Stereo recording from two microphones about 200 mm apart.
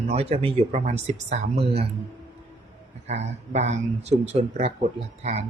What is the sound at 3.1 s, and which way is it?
Speech, 35° right (ahead or behind).